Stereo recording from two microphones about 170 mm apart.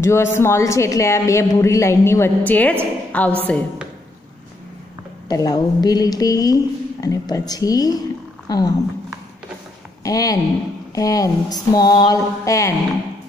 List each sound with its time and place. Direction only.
0.0 s speech: 15° left (ahead or behind)
5.3 s a woman's voice: 20° left (ahead or behind)
10.0 s a woman's voice: 20° left (ahead or behind)